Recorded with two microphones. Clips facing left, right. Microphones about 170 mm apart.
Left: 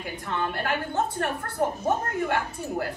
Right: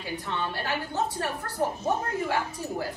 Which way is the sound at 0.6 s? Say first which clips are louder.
Left 3 dB; 55° left (ahead or behind).